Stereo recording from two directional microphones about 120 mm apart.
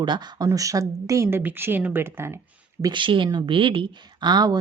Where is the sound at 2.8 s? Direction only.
40° right (ahead or behind).